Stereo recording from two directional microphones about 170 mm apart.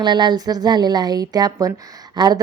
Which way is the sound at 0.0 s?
25° right (ahead or behind).